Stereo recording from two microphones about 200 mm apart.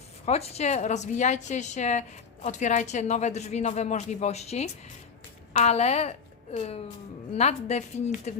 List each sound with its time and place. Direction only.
0.3 s a woman's voice: 30° left (ahead or behind)